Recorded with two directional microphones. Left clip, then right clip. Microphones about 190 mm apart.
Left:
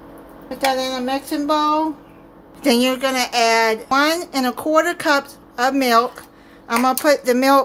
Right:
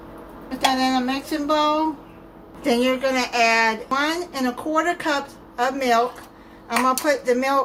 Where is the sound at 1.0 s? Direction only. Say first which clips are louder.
Left 3 dB; 45° left (ahead or behind).